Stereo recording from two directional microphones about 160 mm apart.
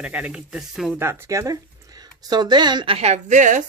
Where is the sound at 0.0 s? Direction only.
5° right (ahead or behind).